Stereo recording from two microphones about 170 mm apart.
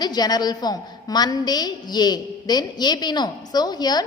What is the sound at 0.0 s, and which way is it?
A woman's voice, 25° left (ahead or behind).